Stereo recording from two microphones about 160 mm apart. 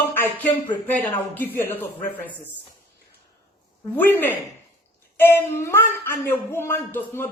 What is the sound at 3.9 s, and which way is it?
Speech, 10° left (ahead or behind).